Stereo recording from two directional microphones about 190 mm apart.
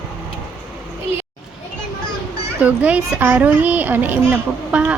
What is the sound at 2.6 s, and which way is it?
A child's voice, 5° right (ahead or behind).